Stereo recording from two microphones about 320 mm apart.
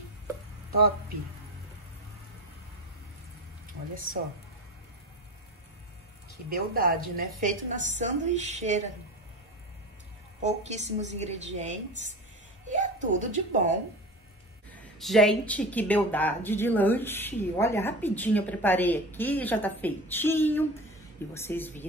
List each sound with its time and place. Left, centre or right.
3.9 s a woman's voice: right
6.7 s a woman's voice: right
10.4 s a woman's voice: right
14.7 s speech: centre